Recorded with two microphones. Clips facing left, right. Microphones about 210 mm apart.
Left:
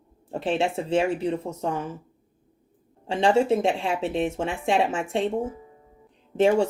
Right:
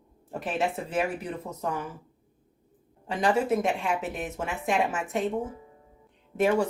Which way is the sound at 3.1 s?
25° left (ahead or behind).